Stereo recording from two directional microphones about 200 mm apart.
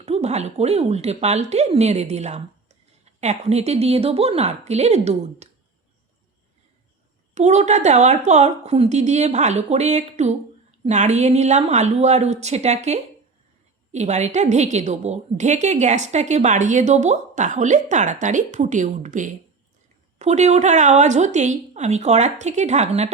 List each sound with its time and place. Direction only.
0.0 s a woman's voice: 30° right (ahead or behind)
7.3 s a woman's voice: 35° right (ahead or behind)